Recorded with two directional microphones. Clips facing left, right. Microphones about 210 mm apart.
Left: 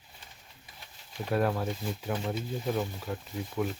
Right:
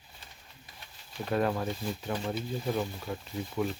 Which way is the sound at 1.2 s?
Centre (ahead or behind).